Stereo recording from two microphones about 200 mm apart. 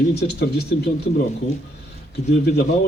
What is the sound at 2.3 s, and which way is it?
Speech, 55° left (ahead or behind).